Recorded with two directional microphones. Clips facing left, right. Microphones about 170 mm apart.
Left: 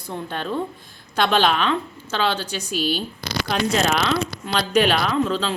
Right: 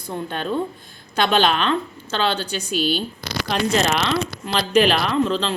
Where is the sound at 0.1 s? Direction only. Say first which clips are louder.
Right 2 dB; centre (ahead or behind).